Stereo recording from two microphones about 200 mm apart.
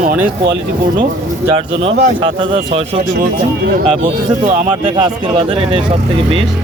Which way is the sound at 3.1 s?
45° right (ahead or behind).